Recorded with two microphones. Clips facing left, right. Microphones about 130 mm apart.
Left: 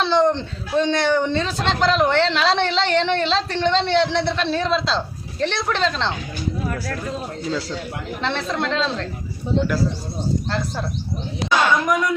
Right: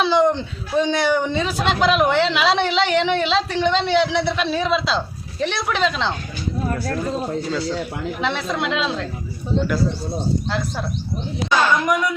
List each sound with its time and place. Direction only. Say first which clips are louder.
0.0 s a man's voice: right 1 dB; 5° right (ahead or behind)
6.7 s speech: right 3 dB; 30° right (ahead or behind)
8.2 s a woman's voice: even; 5° right (ahead or behind)
11.9 s a man's voice: even; 5° right (ahead or behind)